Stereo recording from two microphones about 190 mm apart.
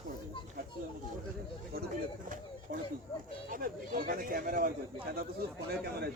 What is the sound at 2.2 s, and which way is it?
A man's voice, 45° right (ahead or behind).